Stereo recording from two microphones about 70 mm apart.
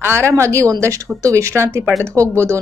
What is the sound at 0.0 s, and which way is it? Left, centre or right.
A woman's voice, right.